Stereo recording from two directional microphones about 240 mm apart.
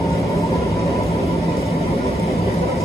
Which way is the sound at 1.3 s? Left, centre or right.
Left.